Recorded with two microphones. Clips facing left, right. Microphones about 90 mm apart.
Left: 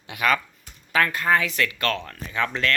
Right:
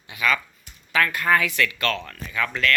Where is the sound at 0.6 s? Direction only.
35° left (ahead or behind).